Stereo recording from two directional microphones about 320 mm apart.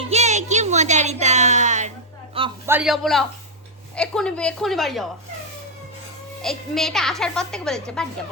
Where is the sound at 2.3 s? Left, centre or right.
Centre.